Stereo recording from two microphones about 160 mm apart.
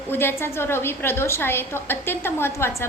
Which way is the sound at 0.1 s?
15° left (ahead or behind).